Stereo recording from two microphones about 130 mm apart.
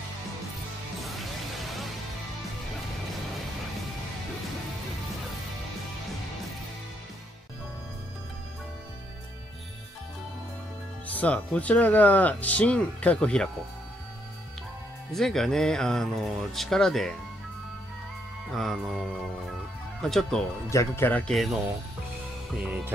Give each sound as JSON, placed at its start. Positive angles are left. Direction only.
{"t": 1.0, "sound": "music", "side_deg": 0}
{"t": 11.1, "sound": "speech", "side_deg": 10}
{"t": 15.1, "sound": "speech", "side_deg": 5}
{"t": 18.5, "sound": "speech", "side_deg": 0}
{"t": 20.7, "sound": "speech", "side_deg": 20}
{"t": 21.3, "sound": "speech", "side_deg": 0}